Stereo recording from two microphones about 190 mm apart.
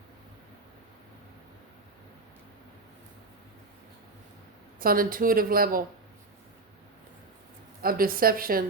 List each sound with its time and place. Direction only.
4.8 s speech: 50° right (ahead or behind)
7.8 s speech: 50° right (ahead or behind)